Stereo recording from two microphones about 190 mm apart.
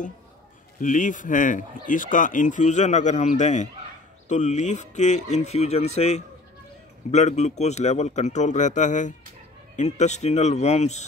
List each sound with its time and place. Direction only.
0.7 s speech: 40° left (ahead or behind)